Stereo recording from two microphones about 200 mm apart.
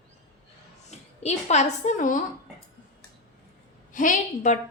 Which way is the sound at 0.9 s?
35° left (ahead or behind).